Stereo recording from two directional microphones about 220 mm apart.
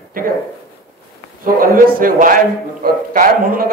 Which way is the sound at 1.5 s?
40° right (ahead or behind).